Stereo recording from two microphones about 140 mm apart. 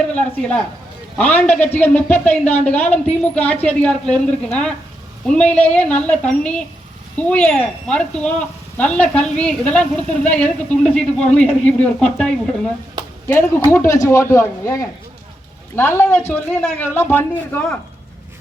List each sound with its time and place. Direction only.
0.1 s speech: 5° left (ahead or behind)
13.2 s speech: 15° left (ahead or behind)